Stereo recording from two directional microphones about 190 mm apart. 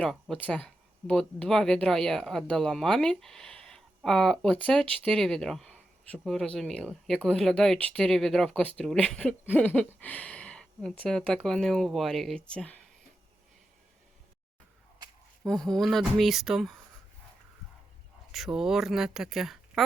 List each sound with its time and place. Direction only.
0.0 s speech: 5° left (ahead or behind)
15.4 s speech: centre (ahead or behind)
18.3 s speech: centre (ahead or behind)